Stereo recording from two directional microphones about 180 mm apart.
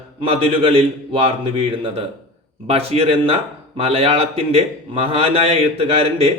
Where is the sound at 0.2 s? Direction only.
30° right (ahead or behind).